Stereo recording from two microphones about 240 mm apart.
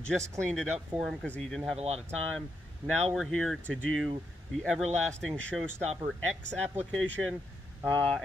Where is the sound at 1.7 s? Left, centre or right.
Right.